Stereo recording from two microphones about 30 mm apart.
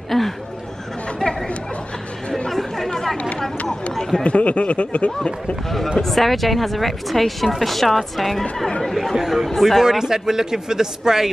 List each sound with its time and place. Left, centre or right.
0.1 s a sound: centre
1.2 s chatter: left
2.9 s chatter: centre
4.2 s speech: left
6.0 s a woman's voice: centre
9.1 s speech: centre
9.5 s a woman's voice: centre
9.8 s speech: centre